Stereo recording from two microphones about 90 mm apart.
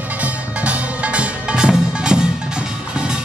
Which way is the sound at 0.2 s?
15° right (ahead or behind).